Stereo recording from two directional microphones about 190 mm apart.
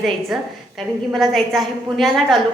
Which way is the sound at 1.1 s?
Centre (ahead or behind).